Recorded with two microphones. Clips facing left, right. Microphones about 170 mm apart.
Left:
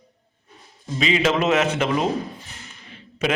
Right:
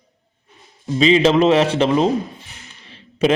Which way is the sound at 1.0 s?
30° right (ahead or behind).